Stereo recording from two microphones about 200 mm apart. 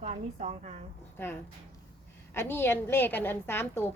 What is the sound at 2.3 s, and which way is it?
A woman's voice, 10° left (ahead or behind).